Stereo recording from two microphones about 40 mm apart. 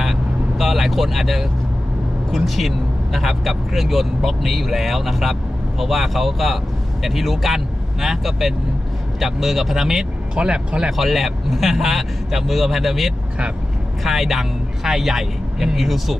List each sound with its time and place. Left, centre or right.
0.6 s speech: centre
10.3 s speech: right
10.9 s speech: centre